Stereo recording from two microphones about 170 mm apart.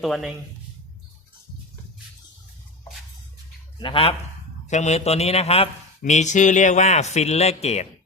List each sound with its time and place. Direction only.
0.0 s speech: centre (ahead or behind)
3.8 s a man's voice: 30° left (ahead or behind)
4.7 s a man's voice: 40° left (ahead or behind)